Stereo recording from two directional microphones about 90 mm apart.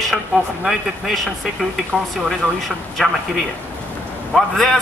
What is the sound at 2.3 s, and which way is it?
A man's voice, 5° left (ahead or behind).